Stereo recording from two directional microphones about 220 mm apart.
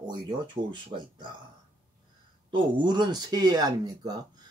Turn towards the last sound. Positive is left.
turn(degrees=-15)  # may be behind; listen again after turning